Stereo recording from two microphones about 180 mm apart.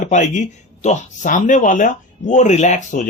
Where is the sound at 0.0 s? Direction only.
40° left (ahead or behind).